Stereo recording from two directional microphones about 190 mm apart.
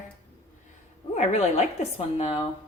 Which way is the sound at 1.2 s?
35° left (ahead or behind).